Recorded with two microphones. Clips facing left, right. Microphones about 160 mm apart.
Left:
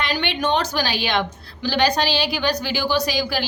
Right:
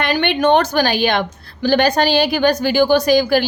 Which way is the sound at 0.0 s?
55° right (ahead or behind).